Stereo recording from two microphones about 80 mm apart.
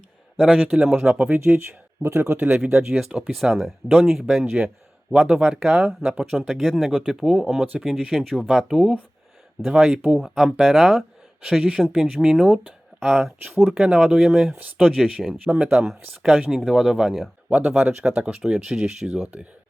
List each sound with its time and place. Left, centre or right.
0.3 s speech: centre
0.7 s speech: centre
1.5 s speech: right
2.6 s speech: centre
14.5 s speech: right
14.9 s speech: centre